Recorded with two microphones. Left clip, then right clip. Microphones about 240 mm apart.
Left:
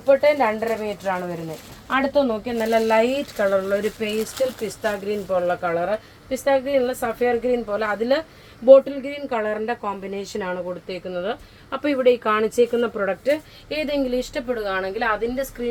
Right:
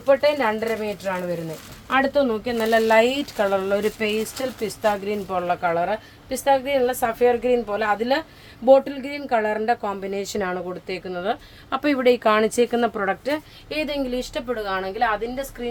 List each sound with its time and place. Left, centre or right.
0.0 s a woman's voice: centre